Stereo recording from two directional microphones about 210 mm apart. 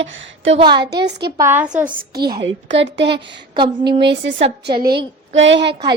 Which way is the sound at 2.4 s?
60° right (ahead or behind).